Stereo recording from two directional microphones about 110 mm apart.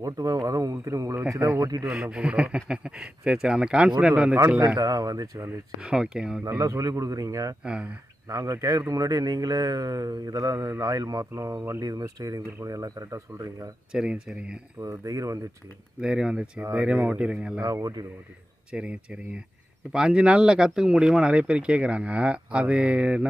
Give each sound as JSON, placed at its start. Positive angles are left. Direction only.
{"t": 0.0, "sound": "mantra", "side_deg": -30}
{"t": 1.9, "sound": "speech", "side_deg": -5}
{"t": 4.7, "sound": "mantra", "side_deg": -35}
{"t": 5.8, "sound": "speech", "side_deg": -10}
{"t": 6.6, "sound": "mantra", "side_deg": -30}
{"t": 7.6, "sound": "speech", "side_deg": -10}
{"t": 8.3, "sound": "mantra", "side_deg": -30}
{"t": 13.9, "sound": "speech", "side_deg": -5}
{"t": 14.8, "sound": "speech", "side_deg": -30}
{"t": 16.0, "sound": "speech", "side_deg": -5}
{"t": 17.7, "sound": "mantra", "side_deg": -35}
{"t": 18.7, "sound": "speech", "side_deg": -10}